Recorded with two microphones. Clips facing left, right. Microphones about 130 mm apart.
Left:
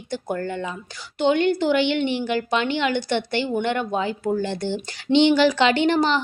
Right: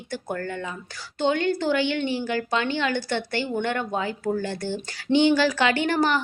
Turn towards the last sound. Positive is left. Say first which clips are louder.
# left 3 dB
turn(degrees=20)  # may be behind; listen again after turning